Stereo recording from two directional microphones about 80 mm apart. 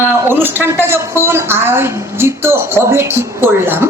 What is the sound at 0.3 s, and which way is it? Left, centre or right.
A woman's voice, right.